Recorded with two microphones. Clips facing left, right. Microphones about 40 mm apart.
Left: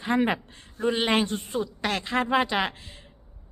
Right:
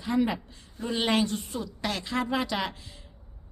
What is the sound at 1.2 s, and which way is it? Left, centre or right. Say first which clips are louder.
A woman's voice: left 2 dB; left.